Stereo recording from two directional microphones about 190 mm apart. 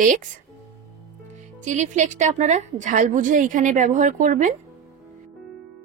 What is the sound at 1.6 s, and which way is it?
Speech, 40° right (ahead or behind).